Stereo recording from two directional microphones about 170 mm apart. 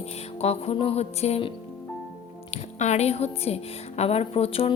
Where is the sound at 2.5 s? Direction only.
40° left (ahead or behind).